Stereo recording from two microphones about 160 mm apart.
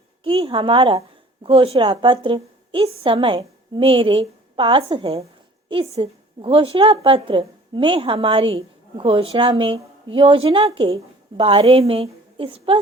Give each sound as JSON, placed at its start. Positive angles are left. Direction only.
{"t": 0.3, "sound": "a woman's voice", "side_deg": -35}